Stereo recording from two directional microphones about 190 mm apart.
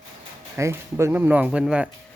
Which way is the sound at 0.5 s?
15° right (ahead or behind).